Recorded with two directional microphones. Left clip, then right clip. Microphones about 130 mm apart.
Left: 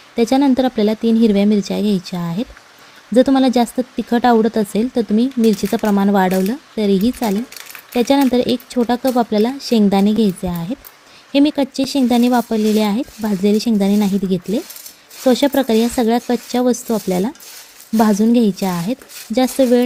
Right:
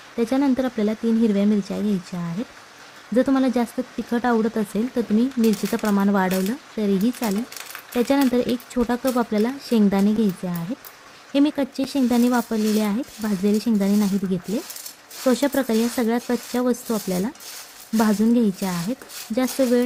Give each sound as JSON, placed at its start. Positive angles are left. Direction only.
{"t": 0.2, "sound": "speech", "side_deg": 35}